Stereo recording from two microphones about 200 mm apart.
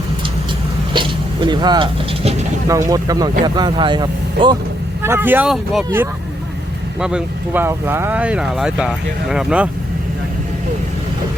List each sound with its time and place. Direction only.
0.9 s speech: 25° right (ahead or behind)
5.0 s speech: 10° right (ahead or behind)